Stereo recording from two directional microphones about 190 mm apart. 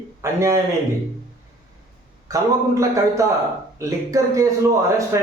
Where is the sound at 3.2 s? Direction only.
15° right (ahead or behind).